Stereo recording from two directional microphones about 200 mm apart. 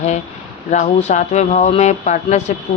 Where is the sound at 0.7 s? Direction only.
35° left (ahead or behind).